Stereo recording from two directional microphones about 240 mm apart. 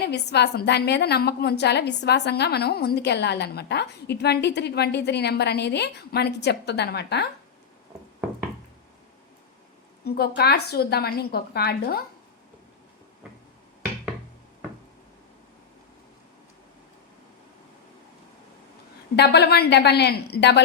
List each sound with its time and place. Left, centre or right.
0.0 s a woman's voice: left
10.0 s a woman's voice: left
19.1 s a woman's voice: left